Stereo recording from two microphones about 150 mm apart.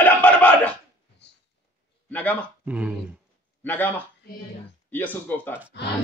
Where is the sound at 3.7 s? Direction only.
10° left (ahead or behind).